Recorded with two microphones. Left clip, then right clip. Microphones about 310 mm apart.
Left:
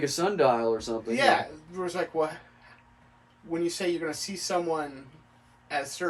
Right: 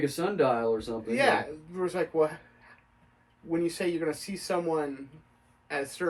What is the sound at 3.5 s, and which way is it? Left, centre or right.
Speech, centre.